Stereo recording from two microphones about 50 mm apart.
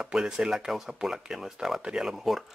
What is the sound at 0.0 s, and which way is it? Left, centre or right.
Speech, centre.